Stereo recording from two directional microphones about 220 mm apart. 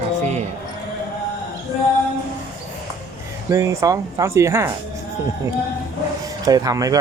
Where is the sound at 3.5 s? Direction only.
15° right (ahead or behind).